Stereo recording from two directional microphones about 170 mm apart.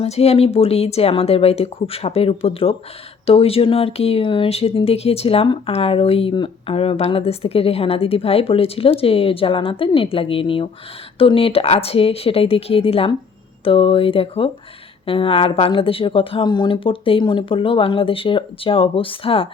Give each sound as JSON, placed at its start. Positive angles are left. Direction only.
{"t": 0.0, "sound": "speech", "side_deg": 40}